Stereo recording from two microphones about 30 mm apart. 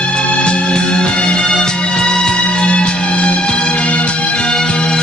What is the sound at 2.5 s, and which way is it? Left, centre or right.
Music, left.